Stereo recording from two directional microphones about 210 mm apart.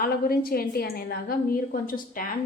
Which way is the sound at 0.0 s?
45° left (ahead or behind).